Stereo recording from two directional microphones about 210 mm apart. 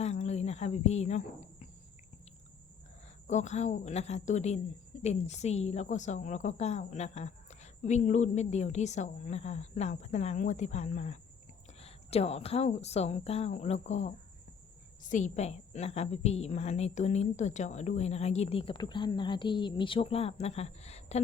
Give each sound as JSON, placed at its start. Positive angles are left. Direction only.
{"t": 0.0, "sound": "cricket", "side_deg": 30}
{"t": 3.2, "sound": "a woman's voice", "side_deg": 35}
{"t": 15.1, "sound": "a woman's voice", "side_deg": 35}